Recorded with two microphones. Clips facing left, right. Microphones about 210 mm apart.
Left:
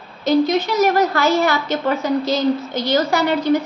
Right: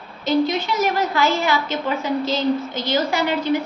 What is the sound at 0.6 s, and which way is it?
A woman's voice, 40° left (ahead or behind).